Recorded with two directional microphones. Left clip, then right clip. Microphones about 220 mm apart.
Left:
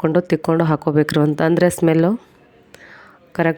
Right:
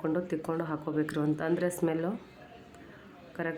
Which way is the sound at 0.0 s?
45° left (ahead or behind).